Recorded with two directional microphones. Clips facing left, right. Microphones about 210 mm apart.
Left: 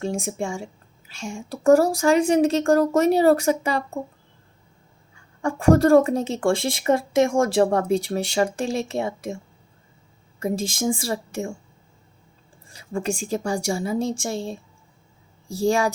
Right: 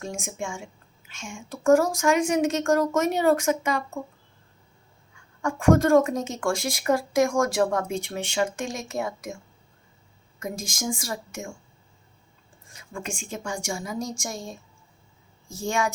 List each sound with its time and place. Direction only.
0.0 s speech: 35° left (ahead or behind)
5.4 s speech: 35° left (ahead or behind)
10.4 s speech: 30° left (ahead or behind)
12.6 s speech: 35° left (ahead or behind)